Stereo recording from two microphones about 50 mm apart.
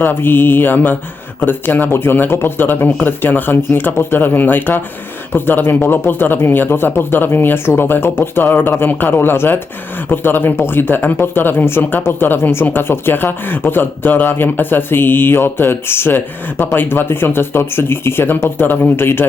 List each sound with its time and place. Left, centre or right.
0.0 s speech: left
12.6 s speech: left